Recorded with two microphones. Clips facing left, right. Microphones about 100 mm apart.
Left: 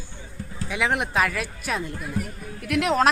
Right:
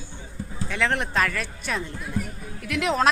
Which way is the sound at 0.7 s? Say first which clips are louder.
Left 1 dB; 10° left (ahead or behind).